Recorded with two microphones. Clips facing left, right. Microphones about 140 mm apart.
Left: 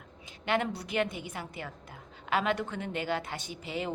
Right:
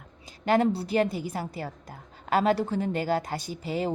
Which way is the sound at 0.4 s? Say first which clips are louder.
Right 7 dB; 40° right (ahead or behind).